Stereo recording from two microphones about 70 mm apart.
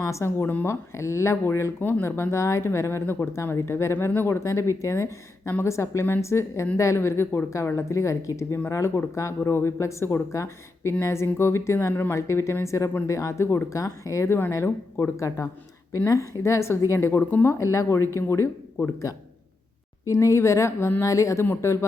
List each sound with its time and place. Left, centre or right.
0.0 s speech: left
0.4 s speech: left
1.8 s speech: left
2.3 s speech: left
14.5 s speech: left
15.1 s speech: left
20.1 s speech: left
21.4 s speech: left